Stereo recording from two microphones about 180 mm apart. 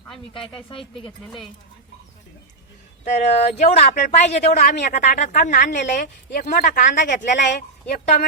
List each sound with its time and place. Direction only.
0.3 s speech: 30° left (ahead or behind)
3.0 s speech: 35° left (ahead or behind)